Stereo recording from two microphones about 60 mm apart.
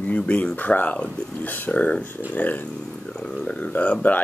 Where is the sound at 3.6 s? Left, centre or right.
Left.